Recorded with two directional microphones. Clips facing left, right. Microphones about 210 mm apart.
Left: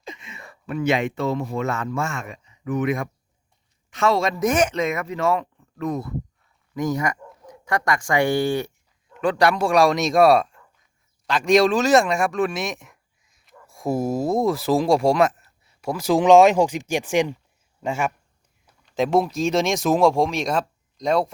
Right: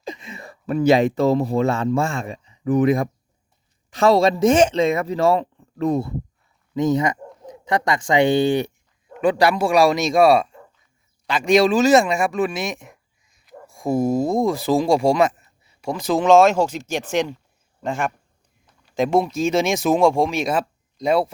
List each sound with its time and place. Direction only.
0.0 s speech: 35° right (ahead or behind); by 8.7 s 20° right (ahead or behind)
9.2 s speech: 5° right (ahead or behind)
13.2 s a sound: centre (ahead or behind)
13.7 s speech: centre (ahead or behind)